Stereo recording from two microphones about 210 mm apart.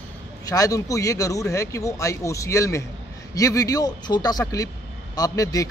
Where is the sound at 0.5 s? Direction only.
15° left (ahead or behind).